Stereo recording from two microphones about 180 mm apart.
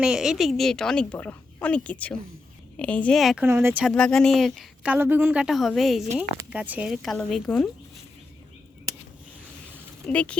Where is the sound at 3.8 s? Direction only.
5° left (ahead or behind).